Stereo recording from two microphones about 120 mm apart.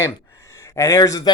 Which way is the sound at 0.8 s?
30° left (ahead or behind).